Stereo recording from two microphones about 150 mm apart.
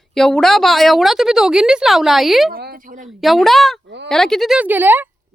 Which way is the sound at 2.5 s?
85° right.